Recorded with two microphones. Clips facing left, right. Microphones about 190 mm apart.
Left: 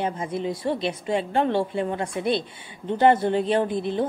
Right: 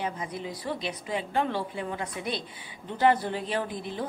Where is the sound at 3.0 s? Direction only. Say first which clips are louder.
Left 5 dB; 25° left (ahead or behind).